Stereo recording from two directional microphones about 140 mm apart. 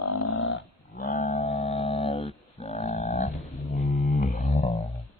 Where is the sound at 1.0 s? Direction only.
75° left (ahead or behind); by 3.3 s 55° left (ahead or behind).